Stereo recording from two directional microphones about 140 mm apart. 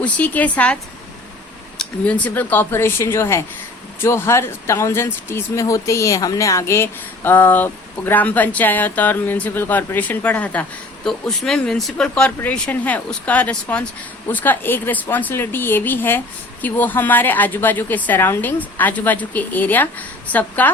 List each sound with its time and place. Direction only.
0.0 s speech: 10° left (ahead or behind)
1.8 s speech: 10° left (ahead or behind)